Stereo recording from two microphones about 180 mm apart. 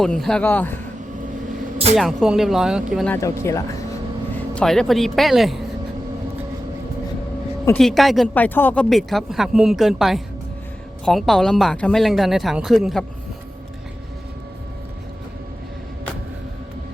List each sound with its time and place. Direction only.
0.0 s speech: centre (ahead or behind)
2.0 s speech: centre (ahead or behind)
3.1 s speech: 15° left (ahead or behind)
4.5 s speech: 5° left (ahead or behind)
7.8 s speech: centre (ahead or behind)
8.3 s speech: 10° left (ahead or behind)